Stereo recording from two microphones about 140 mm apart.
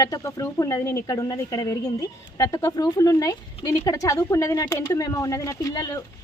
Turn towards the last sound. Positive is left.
turn(degrees=30)  # may be behind; listen again after turning